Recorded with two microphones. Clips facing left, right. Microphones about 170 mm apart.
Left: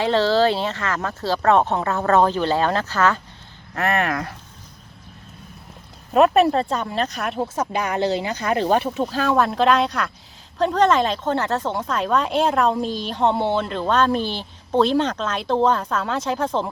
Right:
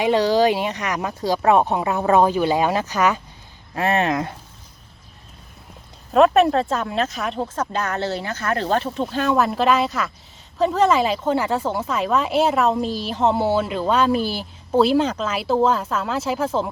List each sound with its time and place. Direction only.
0.0 s speech: 15° right (ahead or behind)
6.1 s speech: centre (ahead or behind)
9.0 s speech: centre (ahead or behind)